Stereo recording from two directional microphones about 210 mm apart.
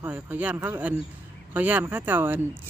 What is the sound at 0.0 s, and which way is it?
Speech, 10° right (ahead or behind).